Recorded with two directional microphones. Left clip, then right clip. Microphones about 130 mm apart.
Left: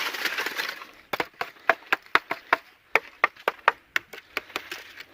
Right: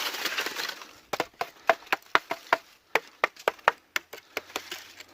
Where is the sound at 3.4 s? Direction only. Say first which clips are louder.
Left 1 dB; 35° right (ahead or behind).